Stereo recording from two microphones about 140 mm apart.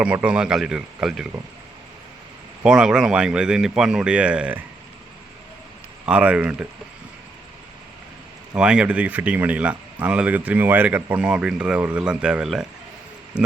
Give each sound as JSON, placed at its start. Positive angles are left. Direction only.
{"t": 0.0, "sound": "speech", "side_deg": -10}
{"t": 2.6, "sound": "speech", "side_deg": -5}
{"t": 6.1, "sound": "speech", "side_deg": -10}
{"t": 8.5, "sound": "speech", "side_deg": -5}